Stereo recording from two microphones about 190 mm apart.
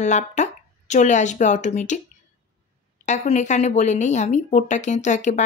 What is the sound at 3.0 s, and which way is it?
Speech, 40° left (ahead or behind).